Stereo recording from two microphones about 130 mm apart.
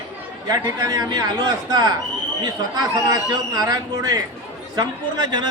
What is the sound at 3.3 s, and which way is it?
A woman's voice, 30° right (ahead or behind).